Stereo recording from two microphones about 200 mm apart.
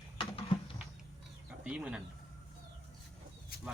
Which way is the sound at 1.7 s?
5° right (ahead or behind).